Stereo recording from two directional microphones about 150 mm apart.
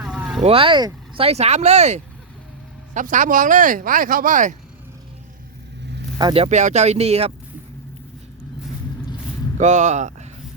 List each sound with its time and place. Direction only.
0.0 s vehicle: 5° right (ahead or behind)
0.4 s speech: 40° right (ahead or behind)
1.2 s speech: 45° right (ahead or behind)
6.1 s speech: 30° right (ahead or behind)
6.4 s speech: 50° right (ahead or behind)
9.6 s speech: 50° right (ahead or behind)